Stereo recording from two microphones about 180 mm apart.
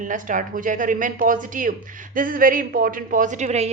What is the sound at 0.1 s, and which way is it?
A woman's voice, 50° right (ahead or behind).